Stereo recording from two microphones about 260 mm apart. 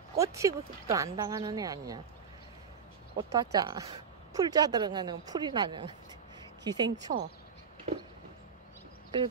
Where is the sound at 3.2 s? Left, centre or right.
Centre.